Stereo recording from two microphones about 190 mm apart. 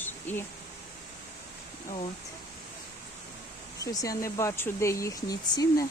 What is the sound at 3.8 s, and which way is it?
Speech, 20° left (ahead or behind).